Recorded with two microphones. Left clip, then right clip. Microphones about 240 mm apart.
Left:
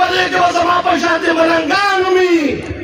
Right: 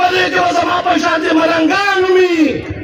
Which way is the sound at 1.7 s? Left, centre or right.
Centre.